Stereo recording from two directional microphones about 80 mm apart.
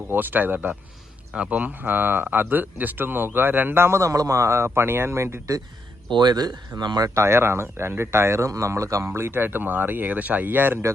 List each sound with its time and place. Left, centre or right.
0.1 s speech: right
6.1 s speech: right
7.1 s speech: right